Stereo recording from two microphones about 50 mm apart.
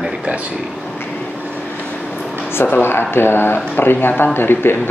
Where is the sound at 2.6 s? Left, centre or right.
Left.